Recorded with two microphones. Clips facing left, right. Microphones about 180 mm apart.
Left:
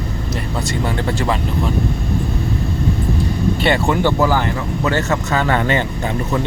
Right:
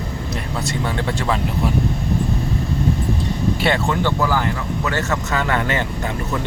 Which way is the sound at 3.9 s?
15° left (ahead or behind).